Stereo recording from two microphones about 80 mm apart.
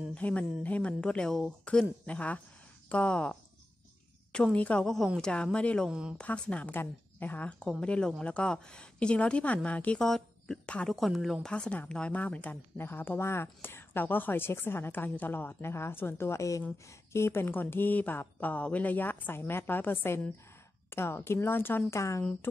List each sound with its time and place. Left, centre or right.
0.1 s a woman's voice: centre
4.8 s a woman's voice: centre
5.9 s speech: centre
6.1 s a woman's voice: centre
9.9 s a woman's voice: centre; by 22.0 s left